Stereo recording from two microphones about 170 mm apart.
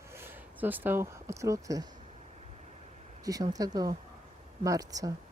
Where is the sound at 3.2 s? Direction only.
20° right (ahead or behind).